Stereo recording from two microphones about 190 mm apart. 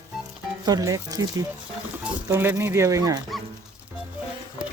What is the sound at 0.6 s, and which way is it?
Speech, 20° right (ahead or behind).